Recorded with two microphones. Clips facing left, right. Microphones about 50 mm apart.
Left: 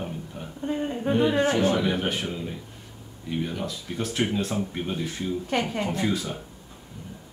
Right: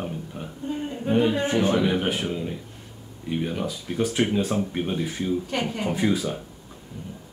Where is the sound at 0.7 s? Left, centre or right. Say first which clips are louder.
Left 1 dB; left.